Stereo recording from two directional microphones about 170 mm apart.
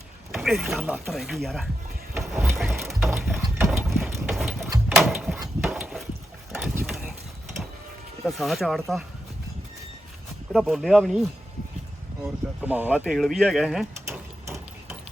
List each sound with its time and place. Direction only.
0.3 s speech: centre (ahead or behind)
2.1 s a sound: centre (ahead or behind)
3.3 s ratchet: 15° right (ahead or behind)
4.0 s engine: 5° right (ahead or behind)
4.9 s a sound: centre (ahead or behind)
8.2 s speech: centre (ahead or behind)
10.5 s speech: centre (ahead or behind)
12.2 s speech: 10° right (ahead or behind)
14.1 s hammer: 15° right (ahead or behind)